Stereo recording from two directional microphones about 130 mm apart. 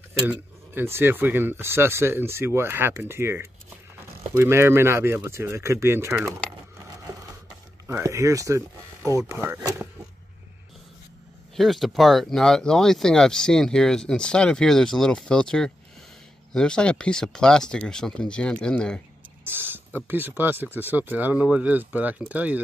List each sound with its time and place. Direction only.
0.3 s speech: 15° right (ahead or behind)
7.8 s speech: 20° right (ahead or behind)
11.5 s speech: centre (ahead or behind)
19.4 s a sound: 15° right (ahead or behind)
20.1 s speech: 15° right (ahead or behind)